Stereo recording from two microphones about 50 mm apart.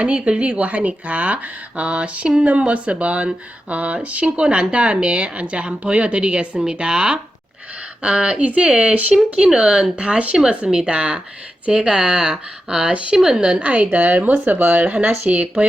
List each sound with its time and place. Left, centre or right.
0.0 s speech: right
13.1 s speech: centre
13.6 s speech: right